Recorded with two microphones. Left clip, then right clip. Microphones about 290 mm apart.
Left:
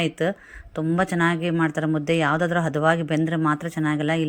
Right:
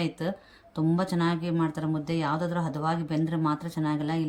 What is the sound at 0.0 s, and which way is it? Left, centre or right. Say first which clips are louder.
Speech: left 8 dB; centre.